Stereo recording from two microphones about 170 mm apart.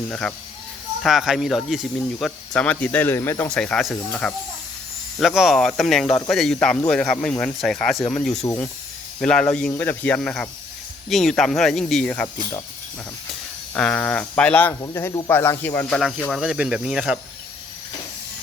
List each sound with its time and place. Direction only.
0.1 s speech: 5° left (ahead or behind)
3.6 s speech: 5° left (ahead or behind)
8.4 s speech: 10° left (ahead or behind)
13.7 s speech: 5° left (ahead or behind)